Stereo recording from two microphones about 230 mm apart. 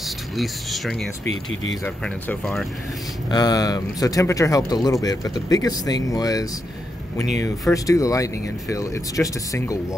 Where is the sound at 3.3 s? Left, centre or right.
Centre.